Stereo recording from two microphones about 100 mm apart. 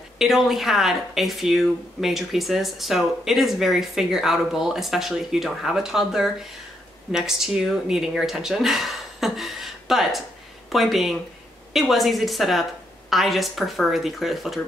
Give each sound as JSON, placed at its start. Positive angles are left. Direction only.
{"t": 0.2, "sound": "speech", "side_deg": 0}